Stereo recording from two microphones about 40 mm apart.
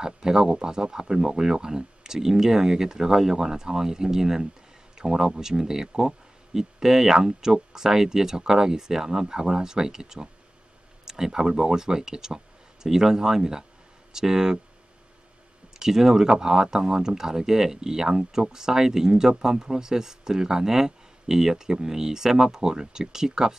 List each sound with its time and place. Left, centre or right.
0.0 s speech: centre
15.8 s speech: centre